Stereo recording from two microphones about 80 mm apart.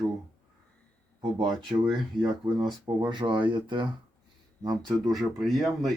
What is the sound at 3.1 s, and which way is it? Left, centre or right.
Speech, right.